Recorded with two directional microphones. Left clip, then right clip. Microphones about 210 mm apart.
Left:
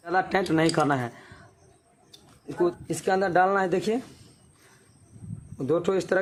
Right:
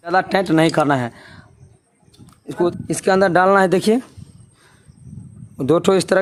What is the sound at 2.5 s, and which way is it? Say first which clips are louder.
Speech: right 6 dB; 40° right (ahead or behind).